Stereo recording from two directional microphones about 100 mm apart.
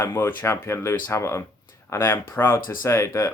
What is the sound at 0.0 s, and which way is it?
Speech, 25° left (ahead or behind).